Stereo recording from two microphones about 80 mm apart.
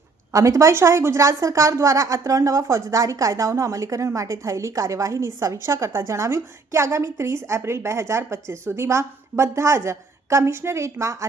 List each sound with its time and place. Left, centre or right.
0.3 s speech: right